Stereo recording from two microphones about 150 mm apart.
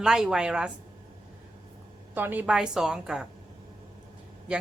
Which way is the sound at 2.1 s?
10° right (ahead or behind).